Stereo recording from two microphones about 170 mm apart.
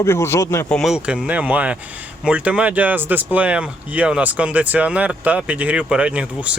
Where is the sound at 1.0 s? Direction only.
5° right (ahead or behind).